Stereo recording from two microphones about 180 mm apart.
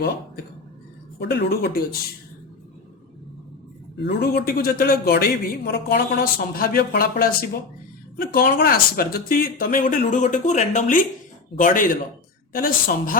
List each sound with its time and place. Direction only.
1.2 s a man's voice: 65° left (ahead or behind)
4.0 s a man's voice: 60° left (ahead or behind)